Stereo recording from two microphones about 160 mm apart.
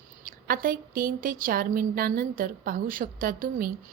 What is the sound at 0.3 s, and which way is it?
A woman's voice, 65° right (ahead or behind).